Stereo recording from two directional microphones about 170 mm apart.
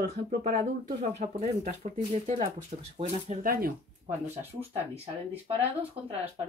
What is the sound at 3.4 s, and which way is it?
Speech, 60° right (ahead or behind).